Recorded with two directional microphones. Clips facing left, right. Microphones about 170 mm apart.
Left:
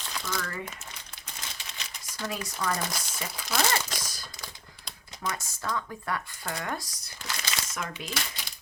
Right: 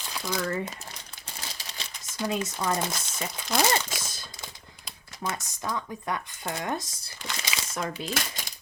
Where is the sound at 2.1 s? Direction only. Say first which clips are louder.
Right 5 dB; 20° right (ahead or behind).